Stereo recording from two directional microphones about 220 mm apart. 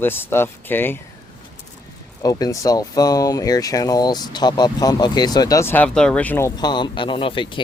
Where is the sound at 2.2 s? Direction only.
15° left (ahead or behind).